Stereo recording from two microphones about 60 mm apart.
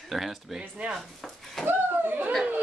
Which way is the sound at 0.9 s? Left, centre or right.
Centre.